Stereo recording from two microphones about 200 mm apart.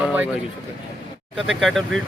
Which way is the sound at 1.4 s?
Centre (ahead or behind).